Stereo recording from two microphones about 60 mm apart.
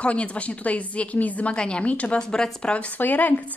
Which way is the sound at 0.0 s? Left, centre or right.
Left.